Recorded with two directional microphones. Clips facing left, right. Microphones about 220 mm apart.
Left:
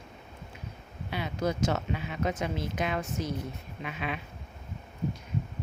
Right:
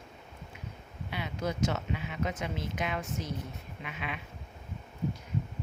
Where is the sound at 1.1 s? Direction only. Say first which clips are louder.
Left 4 dB; 40° left (ahead or behind).